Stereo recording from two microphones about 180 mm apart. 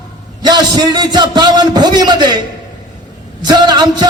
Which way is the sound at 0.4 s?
25° right (ahead or behind).